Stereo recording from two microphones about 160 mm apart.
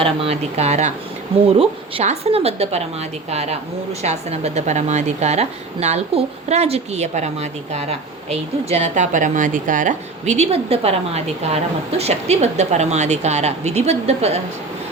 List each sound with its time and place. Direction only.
0.0 s speech: 35° right (ahead or behind)
4.0 s a woman's voice: 40° right (ahead or behind)